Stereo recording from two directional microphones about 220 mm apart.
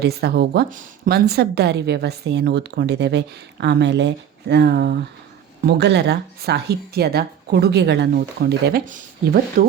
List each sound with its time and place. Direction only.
0.0 s a woman's voice: 45° right (ahead or behind)